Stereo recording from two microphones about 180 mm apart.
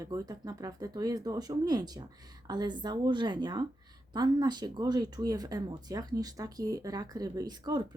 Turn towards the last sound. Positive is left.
turn(degrees=-25)  # may be behind; listen again after turning